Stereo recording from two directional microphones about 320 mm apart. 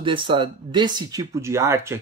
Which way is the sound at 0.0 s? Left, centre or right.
Centre.